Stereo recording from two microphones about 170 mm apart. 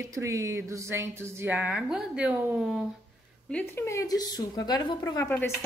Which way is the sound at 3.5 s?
15° left (ahead or behind).